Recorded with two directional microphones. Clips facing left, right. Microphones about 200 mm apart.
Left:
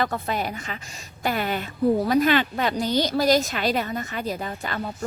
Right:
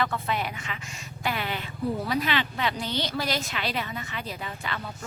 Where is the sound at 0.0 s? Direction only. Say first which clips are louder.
Left 3 dB; 40° left (ahead or behind).